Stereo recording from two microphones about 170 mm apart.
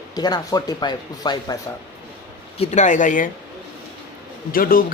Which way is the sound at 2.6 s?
45° left (ahead or behind).